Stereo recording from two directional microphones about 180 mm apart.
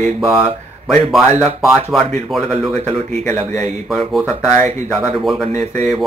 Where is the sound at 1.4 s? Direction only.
Centre (ahead or behind).